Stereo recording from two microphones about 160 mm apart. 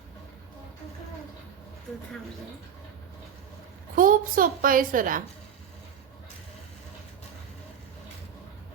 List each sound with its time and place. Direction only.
3.9 s a woman's voice: 60° right (ahead or behind)